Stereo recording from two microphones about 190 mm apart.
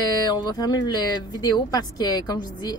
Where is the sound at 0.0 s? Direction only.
20° left (ahead or behind).